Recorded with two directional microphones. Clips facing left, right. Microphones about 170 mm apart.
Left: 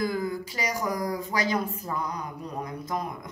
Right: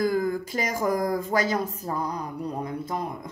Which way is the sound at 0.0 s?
50° right (ahead or behind).